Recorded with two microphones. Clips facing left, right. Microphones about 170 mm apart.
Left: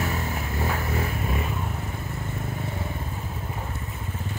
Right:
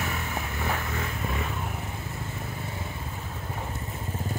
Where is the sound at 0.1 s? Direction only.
35° left (ahead or behind).